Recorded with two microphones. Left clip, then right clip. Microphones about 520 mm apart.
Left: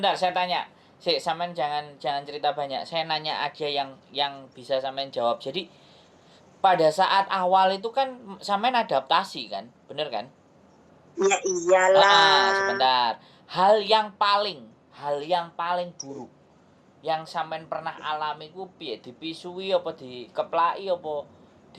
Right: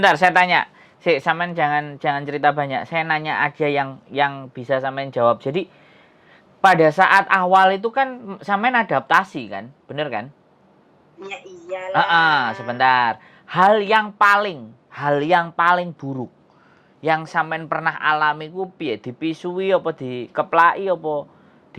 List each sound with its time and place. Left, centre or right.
0.0 s speech: right
8.3 s speech: right
8.8 s speech: right
9.4 s speech: right
11.2 s speech: left
11.9 s speech: right
14.9 s speech: right
19.7 s speech: right